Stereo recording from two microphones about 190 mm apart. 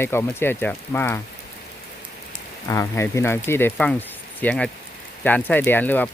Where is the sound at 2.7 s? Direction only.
15° left (ahead or behind).